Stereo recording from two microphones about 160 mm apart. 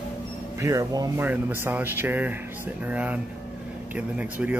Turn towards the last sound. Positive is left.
turn(degrees=-10)  # may be behind; listen again after turning